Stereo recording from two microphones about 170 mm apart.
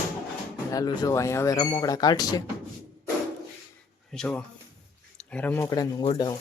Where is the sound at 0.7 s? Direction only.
20° left (ahead or behind).